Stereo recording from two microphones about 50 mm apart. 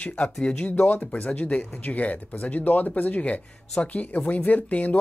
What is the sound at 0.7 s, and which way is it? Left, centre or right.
Speech, left.